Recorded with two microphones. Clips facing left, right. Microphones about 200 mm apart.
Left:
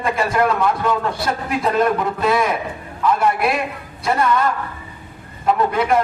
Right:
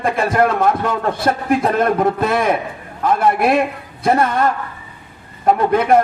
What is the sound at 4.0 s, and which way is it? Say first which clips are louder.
A man's voice: right 3 dB; 50° right (ahead or behind).